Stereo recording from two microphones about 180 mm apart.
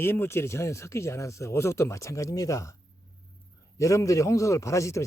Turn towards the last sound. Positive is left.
turn(degrees=15)  # may be behind; listen again after turning